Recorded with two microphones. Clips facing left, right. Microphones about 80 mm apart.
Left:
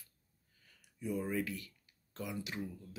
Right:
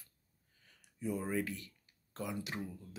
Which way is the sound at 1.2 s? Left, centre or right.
Right.